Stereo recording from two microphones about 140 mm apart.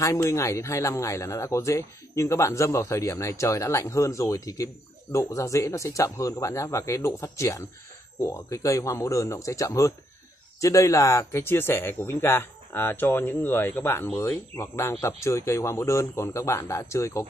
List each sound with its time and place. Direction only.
0.0 s speech: 20° left (ahead or behind)